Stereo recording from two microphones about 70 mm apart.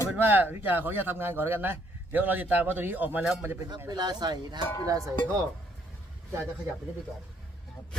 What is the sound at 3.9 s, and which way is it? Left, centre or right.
Speech, right.